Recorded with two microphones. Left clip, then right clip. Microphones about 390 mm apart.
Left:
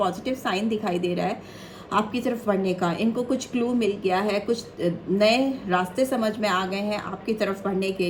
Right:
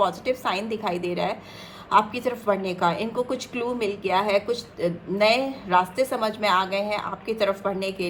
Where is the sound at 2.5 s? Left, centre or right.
Right.